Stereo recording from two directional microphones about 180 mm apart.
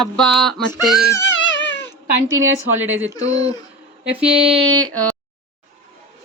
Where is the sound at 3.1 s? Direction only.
20° left (ahead or behind).